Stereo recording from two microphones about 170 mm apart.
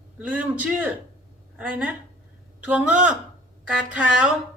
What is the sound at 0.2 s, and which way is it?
A woman's voice, 10° right (ahead or behind).